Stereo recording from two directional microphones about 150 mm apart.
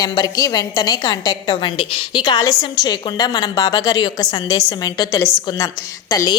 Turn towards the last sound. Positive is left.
turn(degrees=25)  # may be behind; listen again after turning